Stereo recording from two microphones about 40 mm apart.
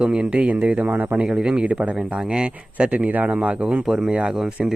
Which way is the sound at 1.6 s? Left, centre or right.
Right.